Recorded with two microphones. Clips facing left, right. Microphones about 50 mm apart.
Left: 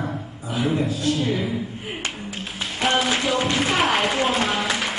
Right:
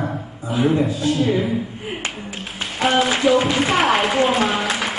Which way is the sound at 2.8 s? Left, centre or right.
Centre.